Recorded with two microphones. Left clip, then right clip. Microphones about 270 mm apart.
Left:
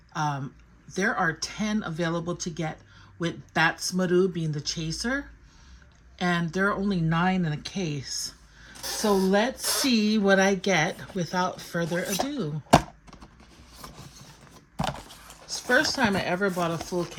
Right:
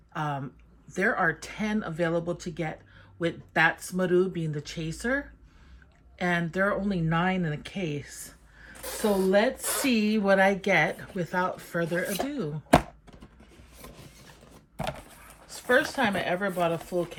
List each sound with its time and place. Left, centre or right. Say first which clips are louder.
0.1 s speech: left 3 dB; centre
15.4 s speech: left 1 dB; centre